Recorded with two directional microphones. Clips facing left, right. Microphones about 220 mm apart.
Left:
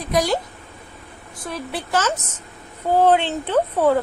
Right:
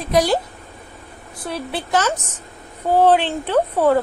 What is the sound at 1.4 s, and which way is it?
Speech, 30° right (ahead or behind).